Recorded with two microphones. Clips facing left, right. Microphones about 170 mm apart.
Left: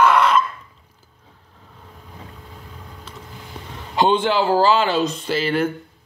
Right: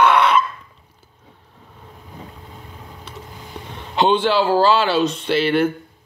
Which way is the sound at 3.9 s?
15° left (ahead or behind).